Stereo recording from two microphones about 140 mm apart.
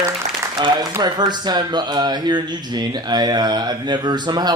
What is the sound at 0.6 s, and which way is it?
Speech, 30° right (ahead or behind).